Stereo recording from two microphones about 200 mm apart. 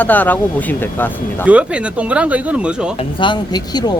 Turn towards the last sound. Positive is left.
turn(degrees=25)  # may be behind; listen again after turning